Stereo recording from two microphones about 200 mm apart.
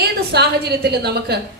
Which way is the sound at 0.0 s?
55° right (ahead or behind).